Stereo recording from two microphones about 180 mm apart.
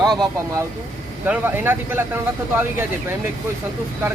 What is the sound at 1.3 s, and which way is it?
Speech, 10° right (ahead or behind).